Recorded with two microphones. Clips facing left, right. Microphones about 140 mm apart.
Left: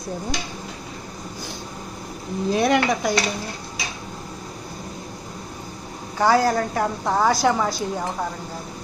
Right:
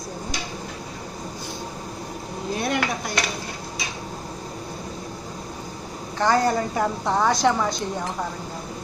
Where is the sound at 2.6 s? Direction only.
90° left.